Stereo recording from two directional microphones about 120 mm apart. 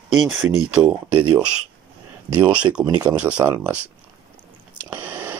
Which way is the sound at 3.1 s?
10° right (ahead or behind).